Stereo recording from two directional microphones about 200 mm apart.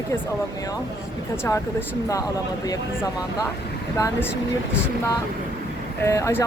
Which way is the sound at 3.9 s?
15° left (ahead or behind).